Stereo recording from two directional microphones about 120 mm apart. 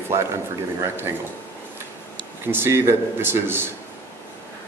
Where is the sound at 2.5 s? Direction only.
20° right (ahead or behind).